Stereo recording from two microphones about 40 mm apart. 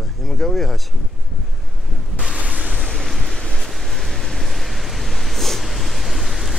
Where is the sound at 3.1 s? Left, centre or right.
Centre.